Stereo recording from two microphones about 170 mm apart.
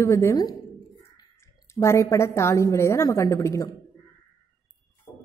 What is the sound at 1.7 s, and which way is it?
A woman's voice, 15° left (ahead or behind).